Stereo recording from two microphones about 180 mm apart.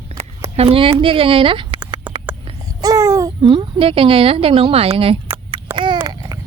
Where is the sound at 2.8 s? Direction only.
20° right (ahead or behind).